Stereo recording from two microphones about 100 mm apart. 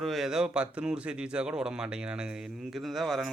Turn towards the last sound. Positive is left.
turn(degrees=0)  # may be behind; listen again after turning